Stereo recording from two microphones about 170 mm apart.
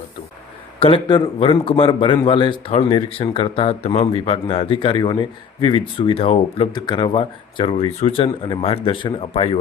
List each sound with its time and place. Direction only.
0.8 s speech: 30° left (ahead or behind)